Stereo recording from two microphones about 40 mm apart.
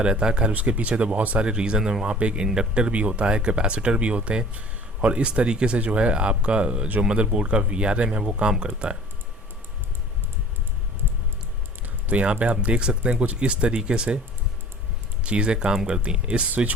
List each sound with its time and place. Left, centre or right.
0.0 s speech: right
0.5 s speech: right
1.4 s speech: right
2.1 s speech: right
12.1 s speech: right
15.2 s speech: right